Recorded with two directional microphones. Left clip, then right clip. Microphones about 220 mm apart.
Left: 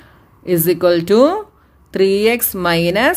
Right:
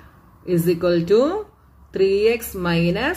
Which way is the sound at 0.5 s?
55° left (ahead or behind).